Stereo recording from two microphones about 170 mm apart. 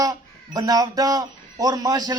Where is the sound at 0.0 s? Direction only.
20° right (ahead or behind).